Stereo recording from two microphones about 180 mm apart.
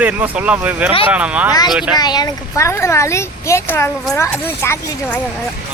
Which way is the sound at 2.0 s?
20° left (ahead or behind).